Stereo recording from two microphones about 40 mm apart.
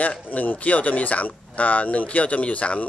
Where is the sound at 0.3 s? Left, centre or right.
Left.